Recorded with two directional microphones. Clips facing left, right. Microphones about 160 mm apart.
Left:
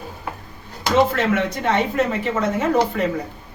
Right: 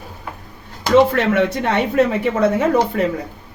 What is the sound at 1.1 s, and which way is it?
Speech, 65° right (ahead or behind).